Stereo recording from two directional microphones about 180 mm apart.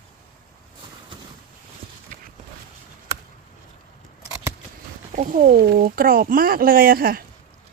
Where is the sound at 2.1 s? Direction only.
45° right (ahead or behind).